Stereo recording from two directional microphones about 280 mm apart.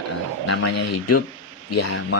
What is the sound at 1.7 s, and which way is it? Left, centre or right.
Speech, left.